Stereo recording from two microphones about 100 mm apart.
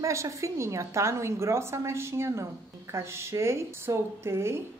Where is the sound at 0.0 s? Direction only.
30° right (ahead or behind).